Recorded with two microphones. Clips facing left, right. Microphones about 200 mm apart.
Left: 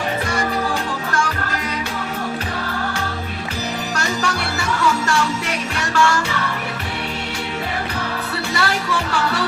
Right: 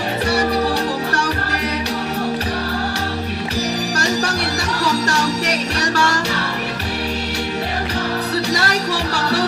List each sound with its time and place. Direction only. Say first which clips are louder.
3.9 s music: even; 40° right (ahead or behind)
8.5 s music: right 1 dB; 40° right (ahead or behind)